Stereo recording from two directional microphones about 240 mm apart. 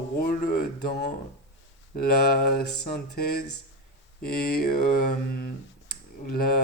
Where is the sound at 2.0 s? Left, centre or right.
Left.